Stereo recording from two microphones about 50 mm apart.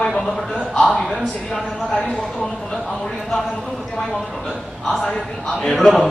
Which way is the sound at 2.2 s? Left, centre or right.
Centre.